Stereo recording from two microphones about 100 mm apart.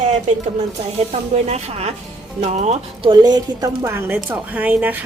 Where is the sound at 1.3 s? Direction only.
90° right.